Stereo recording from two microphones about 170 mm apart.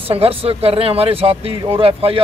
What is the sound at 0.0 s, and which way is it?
Speech, 35° right (ahead or behind).